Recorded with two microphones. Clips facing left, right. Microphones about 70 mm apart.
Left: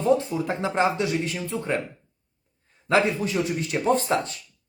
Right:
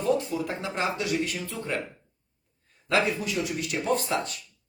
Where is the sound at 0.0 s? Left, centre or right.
Left.